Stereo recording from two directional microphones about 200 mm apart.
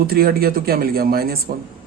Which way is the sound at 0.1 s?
50° right (ahead or behind).